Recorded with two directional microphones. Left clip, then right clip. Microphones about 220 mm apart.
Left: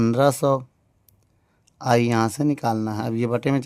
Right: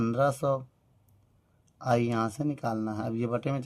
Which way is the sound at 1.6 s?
45° left (ahead or behind).